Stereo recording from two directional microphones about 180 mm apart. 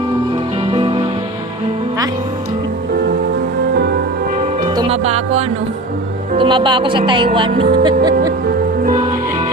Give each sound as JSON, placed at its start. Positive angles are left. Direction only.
{"t": 0.7, "sound": "music", "side_deg": -30}
{"t": 3.8, "sound": "music", "side_deg": -60}
{"t": 4.7, "sound": "music", "side_deg": -25}
{"t": 5.0, "sound": "music", "side_deg": -35}
{"t": 6.3, "sound": "speech", "side_deg": -30}
{"t": 8.4, "sound": "music", "side_deg": -50}